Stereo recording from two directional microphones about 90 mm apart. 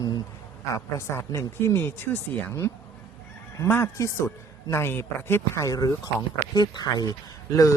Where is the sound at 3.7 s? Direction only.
25° left (ahead or behind).